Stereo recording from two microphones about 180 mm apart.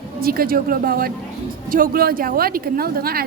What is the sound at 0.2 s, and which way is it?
A woman's voice, 55° right (ahead or behind).